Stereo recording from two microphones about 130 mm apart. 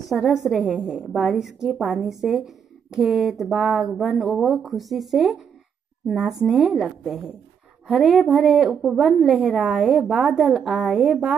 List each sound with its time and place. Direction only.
0.1 s a woman's voice: centre (ahead or behind)